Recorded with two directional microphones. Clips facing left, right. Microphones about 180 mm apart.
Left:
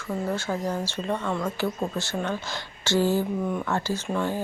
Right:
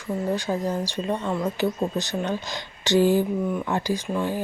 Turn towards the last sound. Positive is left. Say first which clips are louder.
# right 2 dB
turn(degrees=-10)  # may be behind; listen again after turning